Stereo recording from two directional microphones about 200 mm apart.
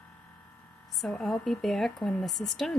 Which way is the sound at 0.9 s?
Centre (ahead or behind).